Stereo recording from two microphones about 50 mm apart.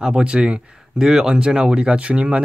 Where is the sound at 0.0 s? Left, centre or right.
Centre.